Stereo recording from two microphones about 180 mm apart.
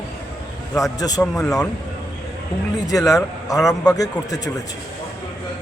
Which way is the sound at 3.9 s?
20° left (ahead or behind).